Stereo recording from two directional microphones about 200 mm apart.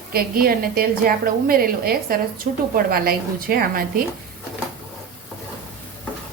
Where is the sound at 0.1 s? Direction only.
45° right (ahead or behind).